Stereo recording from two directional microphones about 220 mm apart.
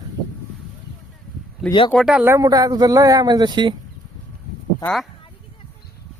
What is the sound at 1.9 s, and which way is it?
Speech, 5° right (ahead or behind).